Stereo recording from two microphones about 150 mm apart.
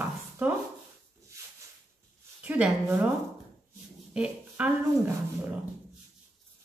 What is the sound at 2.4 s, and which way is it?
Speech, 10° right (ahead or behind).